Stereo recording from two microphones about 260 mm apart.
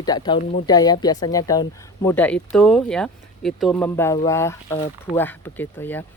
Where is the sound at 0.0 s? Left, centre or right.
Centre.